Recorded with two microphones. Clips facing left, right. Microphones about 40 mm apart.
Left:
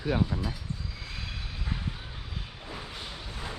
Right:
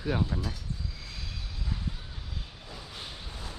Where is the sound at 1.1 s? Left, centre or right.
Left.